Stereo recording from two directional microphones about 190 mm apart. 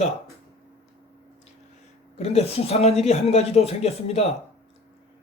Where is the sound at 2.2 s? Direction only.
35° left (ahead or behind).